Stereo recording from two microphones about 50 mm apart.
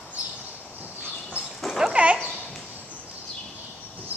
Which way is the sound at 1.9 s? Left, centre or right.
Right.